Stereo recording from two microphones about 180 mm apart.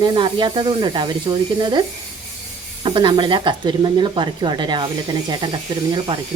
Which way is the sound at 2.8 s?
25° right (ahead or behind).